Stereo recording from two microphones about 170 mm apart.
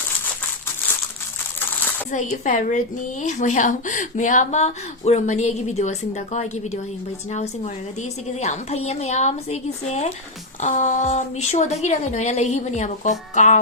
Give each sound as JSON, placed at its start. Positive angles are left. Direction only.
{"t": 2.0, "sound": "a woman's voice", "side_deg": 45}